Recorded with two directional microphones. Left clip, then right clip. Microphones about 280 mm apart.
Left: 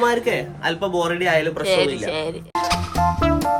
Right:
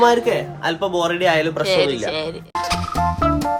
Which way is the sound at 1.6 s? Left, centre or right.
Centre.